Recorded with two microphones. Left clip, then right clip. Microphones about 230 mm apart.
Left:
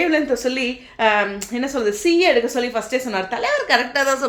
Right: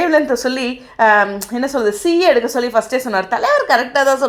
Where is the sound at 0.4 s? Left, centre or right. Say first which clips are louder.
Right 2 dB; centre.